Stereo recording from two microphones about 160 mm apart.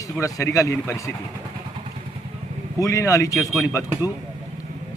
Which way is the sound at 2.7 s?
20° left (ahead or behind).